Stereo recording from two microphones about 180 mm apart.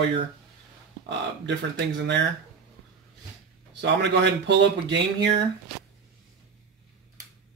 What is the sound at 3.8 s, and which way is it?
Speech, 80° right.